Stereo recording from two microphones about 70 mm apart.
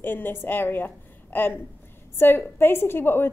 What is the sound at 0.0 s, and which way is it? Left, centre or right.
A woman's voice, left.